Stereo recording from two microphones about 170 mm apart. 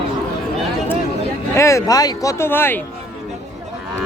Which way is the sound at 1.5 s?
15° left (ahead or behind).